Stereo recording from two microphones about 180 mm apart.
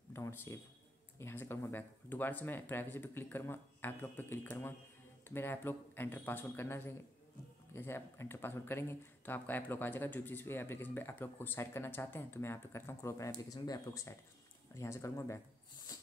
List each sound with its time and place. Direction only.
0.1 s speech: 15° left (ahead or behind)